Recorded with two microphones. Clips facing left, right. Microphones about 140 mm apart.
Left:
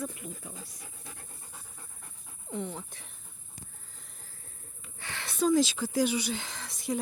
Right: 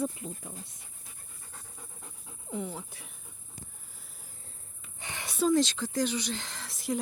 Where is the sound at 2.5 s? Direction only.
5° right (ahead or behind).